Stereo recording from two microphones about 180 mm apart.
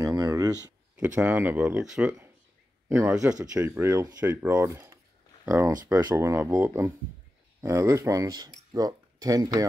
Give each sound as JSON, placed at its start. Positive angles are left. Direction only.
{"t": 0.0, "sound": "a sound", "side_deg": -20}
{"t": 0.9, "sound": "speech", "side_deg": -5}
{"t": 2.9, "sound": "speech", "side_deg": -15}